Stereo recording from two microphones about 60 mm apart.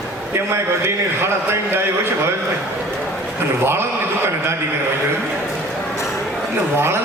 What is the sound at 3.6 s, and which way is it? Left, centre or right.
Speech, right.